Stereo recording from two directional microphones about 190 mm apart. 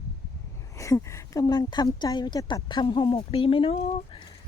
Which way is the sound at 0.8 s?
15° left (ahead or behind).